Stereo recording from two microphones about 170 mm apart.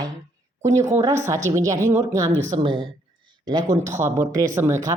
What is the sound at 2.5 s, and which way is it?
A woman's voice, 30° right (ahead or behind).